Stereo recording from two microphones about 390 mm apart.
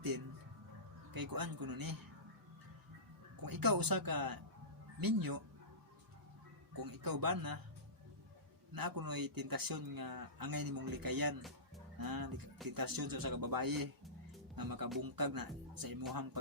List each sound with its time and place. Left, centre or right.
1.1 s speech: right
3.4 s speech: right
6.7 s speech: right
8.7 s speech: right